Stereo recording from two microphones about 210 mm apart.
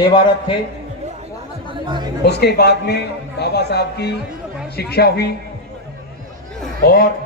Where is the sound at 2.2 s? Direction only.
50° left (ahead or behind).